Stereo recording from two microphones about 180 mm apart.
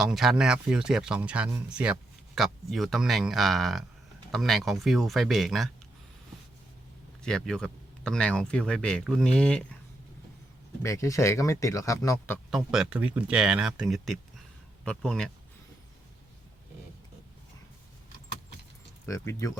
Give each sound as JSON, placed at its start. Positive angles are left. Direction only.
{"t": 0.0, "sound": "speech", "side_deg": 0}
{"t": 7.2, "sound": "speech", "side_deg": 5}
{"t": 10.8, "sound": "speech", "side_deg": 15}
{"t": 12.5, "sound": "speech", "side_deg": 0}
{"t": 19.0, "sound": "speech", "side_deg": 15}